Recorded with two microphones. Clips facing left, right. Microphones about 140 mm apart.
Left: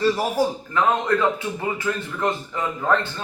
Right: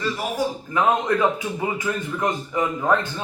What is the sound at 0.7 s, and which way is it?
Speech, 15° right (ahead or behind).